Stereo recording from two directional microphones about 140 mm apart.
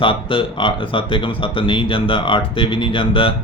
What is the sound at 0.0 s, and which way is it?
Mantra, 40° left (ahead or behind).